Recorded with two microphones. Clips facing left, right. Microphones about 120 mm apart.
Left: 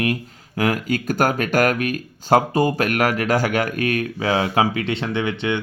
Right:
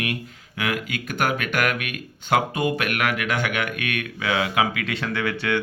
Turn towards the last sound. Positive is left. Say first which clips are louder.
# left 3 dB
turn(degrees=20)  # may be behind; listen again after turning